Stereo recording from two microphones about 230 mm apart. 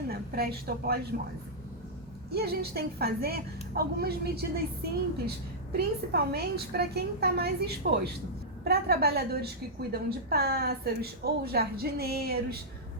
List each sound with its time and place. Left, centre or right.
0.1 s a woman's voice: right
2.3 s a woman's voice: right